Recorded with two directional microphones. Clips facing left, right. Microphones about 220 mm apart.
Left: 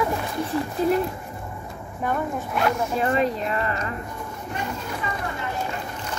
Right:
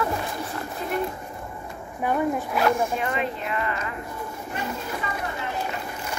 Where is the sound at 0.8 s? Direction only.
35° left (ahead or behind).